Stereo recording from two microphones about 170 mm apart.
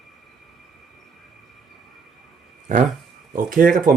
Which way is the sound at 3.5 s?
55° right (ahead or behind).